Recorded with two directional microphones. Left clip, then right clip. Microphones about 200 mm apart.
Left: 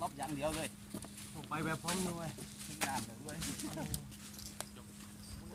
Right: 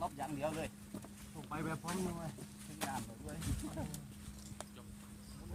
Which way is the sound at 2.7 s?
15° right (ahead or behind).